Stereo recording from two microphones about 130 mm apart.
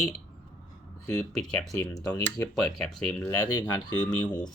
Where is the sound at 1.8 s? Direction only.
25° left (ahead or behind).